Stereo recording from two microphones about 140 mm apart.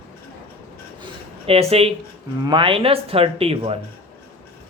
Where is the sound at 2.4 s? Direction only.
35° right (ahead or behind).